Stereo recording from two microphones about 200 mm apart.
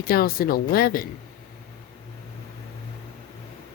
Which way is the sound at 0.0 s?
50° left (ahead or behind).